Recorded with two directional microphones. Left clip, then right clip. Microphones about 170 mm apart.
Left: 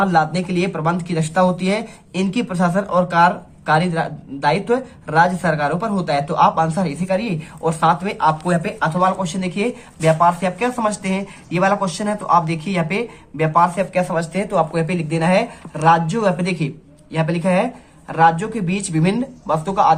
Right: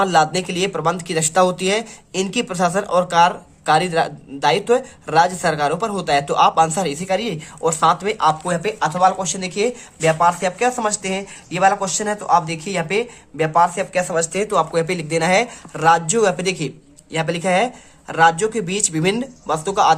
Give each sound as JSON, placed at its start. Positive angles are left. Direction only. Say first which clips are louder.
{"t": 0.0, "sound": "speech", "louder": "right 1 dB", "side_deg": -45}